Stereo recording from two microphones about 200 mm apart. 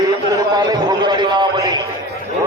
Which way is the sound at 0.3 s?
20° right (ahead or behind).